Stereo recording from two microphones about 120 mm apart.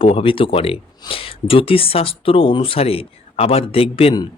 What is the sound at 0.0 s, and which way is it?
Speech, 50° left (ahead or behind).